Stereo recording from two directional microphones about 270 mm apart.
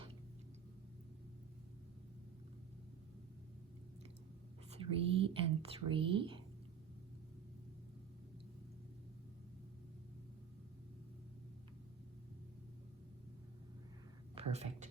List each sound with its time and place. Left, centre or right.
4.7 s speech: centre
14.3 s speech: right